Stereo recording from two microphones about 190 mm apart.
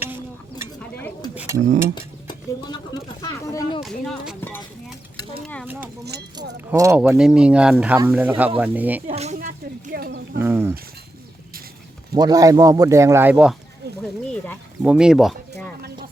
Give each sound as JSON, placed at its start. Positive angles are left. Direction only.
{"t": 0.8, "sound": "stir", "side_deg": 10}
{"t": 1.4, "sound": "a sound", "side_deg": -15}
{"t": 2.0, "sound": "speech", "side_deg": 25}
{"t": 5.6, "sound": "speech", "side_deg": -10}
{"t": 9.0, "sound": "a sound", "side_deg": -35}
{"t": 10.3, "sound": "speech", "side_deg": -10}
{"t": 12.1, "sound": "speech", "side_deg": -20}
{"t": 14.0, "sound": "speech", "side_deg": 5}
{"t": 14.8, "sound": "speech", "side_deg": -5}